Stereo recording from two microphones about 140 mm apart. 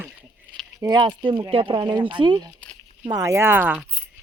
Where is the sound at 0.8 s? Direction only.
30° right (ahead or behind).